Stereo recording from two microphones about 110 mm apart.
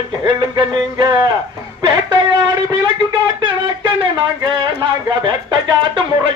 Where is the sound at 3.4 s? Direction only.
45° right (ahead or behind).